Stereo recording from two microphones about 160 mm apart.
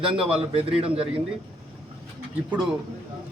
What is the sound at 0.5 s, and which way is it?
Speech, 35° right (ahead or behind).